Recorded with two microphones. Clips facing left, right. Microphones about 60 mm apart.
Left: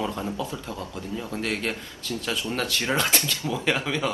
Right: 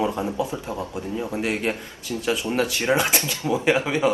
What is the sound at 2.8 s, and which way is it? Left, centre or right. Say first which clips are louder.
Speech: right 1 dB; centre.